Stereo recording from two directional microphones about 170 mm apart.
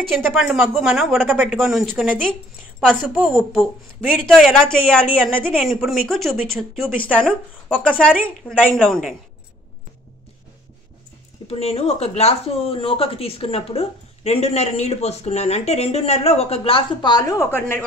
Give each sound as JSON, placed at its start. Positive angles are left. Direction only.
{"t": 0.2, "sound": "a woman's voice", "side_deg": 0}
{"t": 11.4, "sound": "speech", "side_deg": 35}